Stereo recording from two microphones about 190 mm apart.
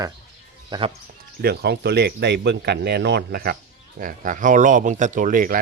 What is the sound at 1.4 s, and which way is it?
Speech, 60° right (ahead or behind).